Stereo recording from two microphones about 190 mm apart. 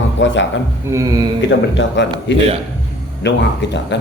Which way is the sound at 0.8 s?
15° right (ahead or behind).